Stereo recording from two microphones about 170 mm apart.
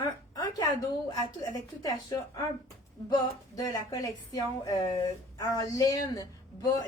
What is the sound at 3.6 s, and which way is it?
Speech, 20° left (ahead or behind).